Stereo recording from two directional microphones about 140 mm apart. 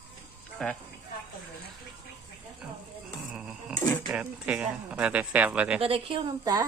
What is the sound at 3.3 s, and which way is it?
Speech, 5° right (ahead or behind).